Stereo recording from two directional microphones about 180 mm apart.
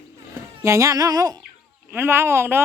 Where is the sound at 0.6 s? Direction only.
15° right (ahead or behind).